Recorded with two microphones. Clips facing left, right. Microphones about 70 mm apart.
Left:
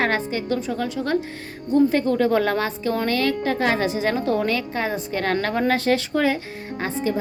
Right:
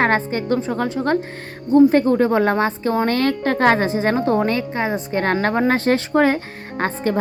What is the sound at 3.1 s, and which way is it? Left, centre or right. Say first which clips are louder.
A woman's voice: right 3 dB; right.